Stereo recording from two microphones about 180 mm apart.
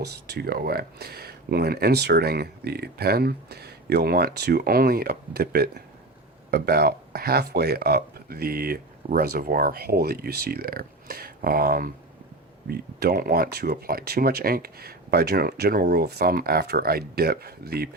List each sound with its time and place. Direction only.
0.0 s speech: 65° right (ahead or behind)